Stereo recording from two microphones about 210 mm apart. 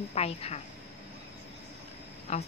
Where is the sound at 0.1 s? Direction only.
30° left (ahead or behind).